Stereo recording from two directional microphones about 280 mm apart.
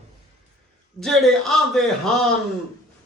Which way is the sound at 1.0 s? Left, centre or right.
Centre.